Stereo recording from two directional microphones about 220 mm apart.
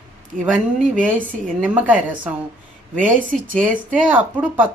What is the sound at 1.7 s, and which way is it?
Speech, 5° right (ahead or behind).